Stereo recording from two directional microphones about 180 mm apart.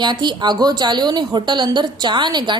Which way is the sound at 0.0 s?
25° right (ahead or behind).